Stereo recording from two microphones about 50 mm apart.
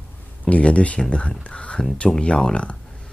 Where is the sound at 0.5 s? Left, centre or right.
Left.